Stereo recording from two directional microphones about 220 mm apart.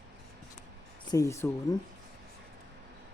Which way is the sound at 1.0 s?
15° left (ahead or behind).